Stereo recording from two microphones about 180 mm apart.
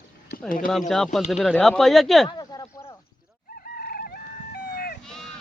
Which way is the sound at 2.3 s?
25° left (ahead or behind).